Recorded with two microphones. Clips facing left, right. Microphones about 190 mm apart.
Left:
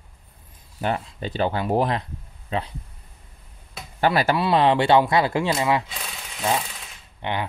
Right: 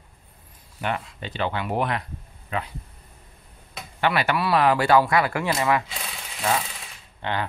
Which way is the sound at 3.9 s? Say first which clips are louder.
Left 3 dB; 35° left (ahead or behind).